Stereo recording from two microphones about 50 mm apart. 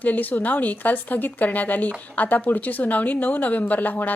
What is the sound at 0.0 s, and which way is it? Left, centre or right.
A woman's voice, left.